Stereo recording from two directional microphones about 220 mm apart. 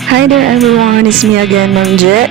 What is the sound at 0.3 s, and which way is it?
Speech, centre (ahead or behind).